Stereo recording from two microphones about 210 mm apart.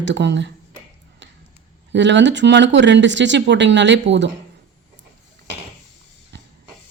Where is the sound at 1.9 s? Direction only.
60° right (ahead or behind).